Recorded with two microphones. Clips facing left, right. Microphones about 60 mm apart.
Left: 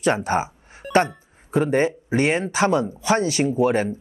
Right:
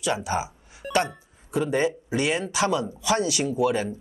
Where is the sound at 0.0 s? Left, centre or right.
Left.